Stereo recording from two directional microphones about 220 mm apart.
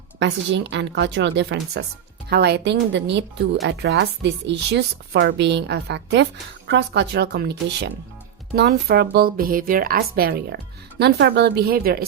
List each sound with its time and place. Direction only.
0.2 s a woman's voice: 55° right (ahead or behind)